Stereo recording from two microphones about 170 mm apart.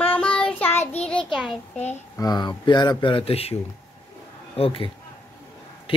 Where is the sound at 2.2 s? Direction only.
25° left (ahead or behind).